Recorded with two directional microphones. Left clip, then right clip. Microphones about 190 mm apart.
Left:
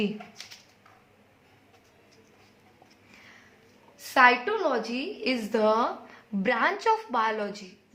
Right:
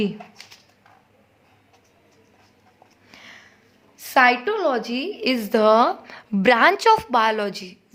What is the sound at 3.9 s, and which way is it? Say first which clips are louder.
A woman's voice: right 3 dB; 50° right (ahead or behind).